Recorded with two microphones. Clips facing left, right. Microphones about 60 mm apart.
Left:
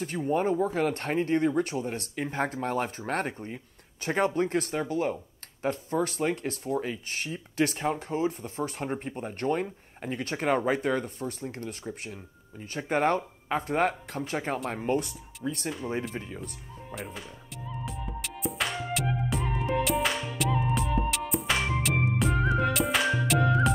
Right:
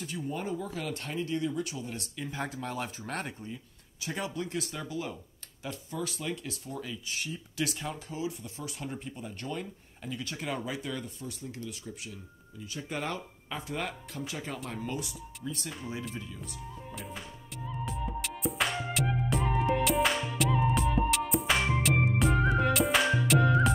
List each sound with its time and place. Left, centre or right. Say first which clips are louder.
0.0 s speech: left 9 dB; left
17.8 s music: right 3 dB; centre